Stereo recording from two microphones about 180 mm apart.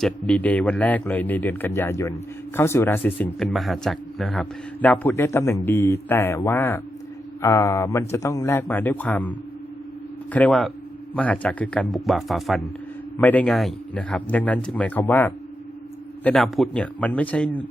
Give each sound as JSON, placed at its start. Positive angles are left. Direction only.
{"t": 0.0, "sound": "a man's voice", "side_deg": 10}
{"t": 10.3, "sound": "a man's voice", "side_deg": 5}